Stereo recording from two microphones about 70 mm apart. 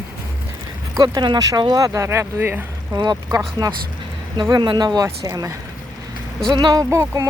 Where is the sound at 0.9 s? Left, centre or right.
Right.